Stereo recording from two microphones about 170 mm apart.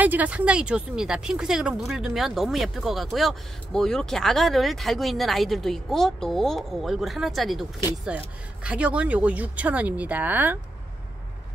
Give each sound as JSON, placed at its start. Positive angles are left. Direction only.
{"t": 0.0, "sound": "speech", "side_deg": -10}
{"t": 8.6, "sound": "speech", "side_deg": -5}